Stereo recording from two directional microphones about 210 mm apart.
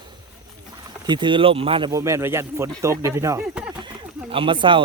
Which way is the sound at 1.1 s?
20° right (ahead or behind).